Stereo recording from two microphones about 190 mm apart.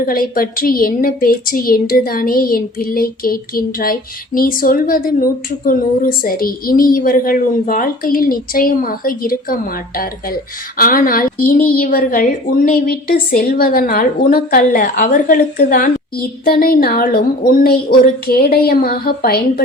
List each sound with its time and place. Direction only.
0.0 s a woman's voice: 50° left (ahead or behind)